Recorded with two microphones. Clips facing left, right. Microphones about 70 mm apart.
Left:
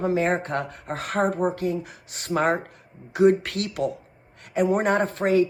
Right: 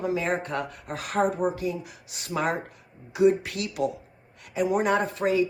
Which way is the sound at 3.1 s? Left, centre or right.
Left.